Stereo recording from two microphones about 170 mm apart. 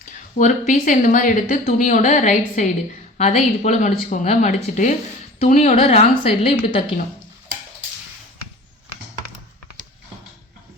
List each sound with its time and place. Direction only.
0.0 s speech: 50° left (ahead or behind); by 7.0 s 30° left (ahead or behind)